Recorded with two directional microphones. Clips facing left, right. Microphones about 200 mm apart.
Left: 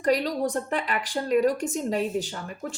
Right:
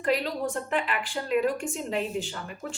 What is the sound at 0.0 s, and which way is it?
A woman's voice, 40° left (ahead or behind).